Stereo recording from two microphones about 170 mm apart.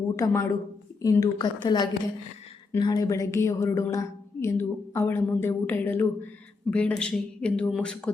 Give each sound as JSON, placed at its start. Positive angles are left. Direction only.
{"t": 0.2, "sound": "a woman's voice", "side_deg": 20}